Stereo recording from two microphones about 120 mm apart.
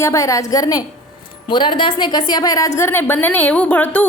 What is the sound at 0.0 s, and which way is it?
A woman's voice, 25° left (ahead or behind).